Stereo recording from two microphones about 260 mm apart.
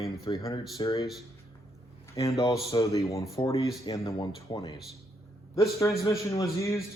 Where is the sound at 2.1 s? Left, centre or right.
Centre.